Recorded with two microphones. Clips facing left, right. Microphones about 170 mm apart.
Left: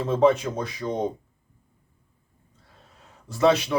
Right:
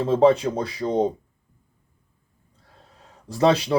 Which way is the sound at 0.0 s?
30° right (ahead or behind).